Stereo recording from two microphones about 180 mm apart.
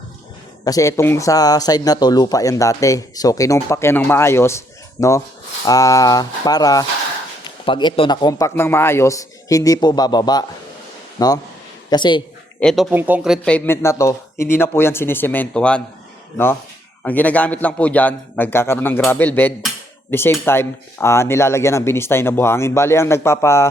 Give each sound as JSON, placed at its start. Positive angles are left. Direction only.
{"t": 0.6, "sound": "speech", "side_deg": 20}
{"t": 12.5, "sound": "speech", "side_deg": 0}
{"t": 12.9, "sound": "speech", "side_deg": -10}
{"t": 17.0, "sound": "speech", "side_deg": 10}